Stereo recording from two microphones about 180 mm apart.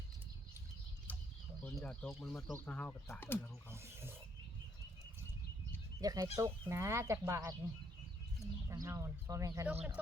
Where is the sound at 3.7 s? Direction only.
15° right (ahead or behind).